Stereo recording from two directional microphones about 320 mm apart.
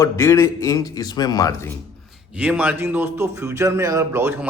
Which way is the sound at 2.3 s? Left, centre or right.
Centre.